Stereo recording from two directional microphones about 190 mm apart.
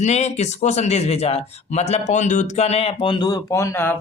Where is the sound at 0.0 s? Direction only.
35° left (ahead or behind).